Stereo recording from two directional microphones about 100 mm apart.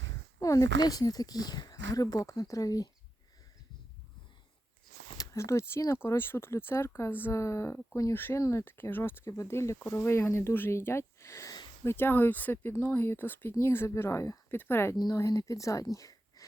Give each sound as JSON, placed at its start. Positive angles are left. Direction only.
{"t": 0.3, "sound": "a sound", "side_deg": 35}
{"t": 0.8, "sound": "speech", "side_deg": 40}
{"t": 5.1, "sound": "speech", "side_deg": 35}
{"t": 14.9, "sound": "speech", "side_deg": 35}